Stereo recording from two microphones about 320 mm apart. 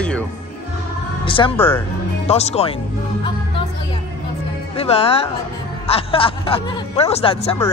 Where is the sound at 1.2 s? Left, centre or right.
Centre.